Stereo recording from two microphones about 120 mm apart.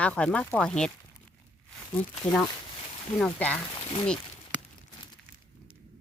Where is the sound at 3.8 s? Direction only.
45° left (ahead or behind).